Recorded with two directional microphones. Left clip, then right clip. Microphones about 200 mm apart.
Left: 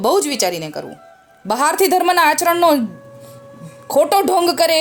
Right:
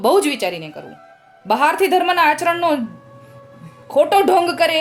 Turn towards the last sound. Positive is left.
turn(degrees=35)  # may be behind; listen again after turning